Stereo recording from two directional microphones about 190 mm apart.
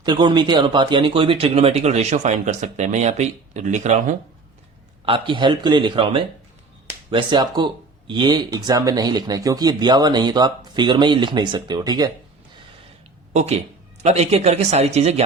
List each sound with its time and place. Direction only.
0.0 s speech: 25° right (ahead or behind)
5.0 s speech: 25° right (ahead or behind)
13.3 s speech: 35° right (ahead or behind)